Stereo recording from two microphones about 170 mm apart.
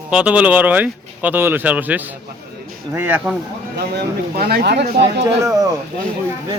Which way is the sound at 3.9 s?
65° right (ahead or behind).